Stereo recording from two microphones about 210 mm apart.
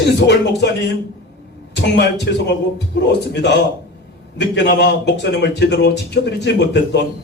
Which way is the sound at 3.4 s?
55° left (ahead or behind).